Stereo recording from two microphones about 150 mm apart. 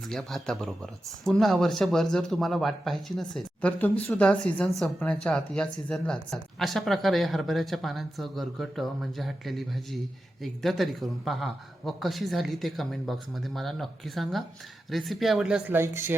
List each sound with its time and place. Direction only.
0.1 s speech: centre (ahead or behind)
15.8 s speech: 15° right (ahead or behind)